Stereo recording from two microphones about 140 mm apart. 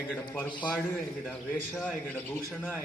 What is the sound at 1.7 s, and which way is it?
Speech, 10° left (ahead or behind).